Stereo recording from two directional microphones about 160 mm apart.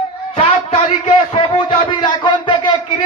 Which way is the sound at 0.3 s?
40° left (ahead or behind).